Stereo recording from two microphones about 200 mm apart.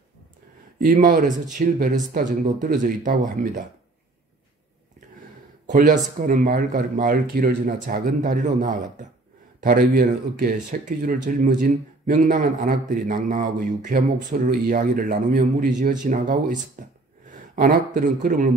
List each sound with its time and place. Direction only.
0.7 s speech: 45° right (ahead or behind)
5.7 s a man's voice: 40° right (ahead or behind)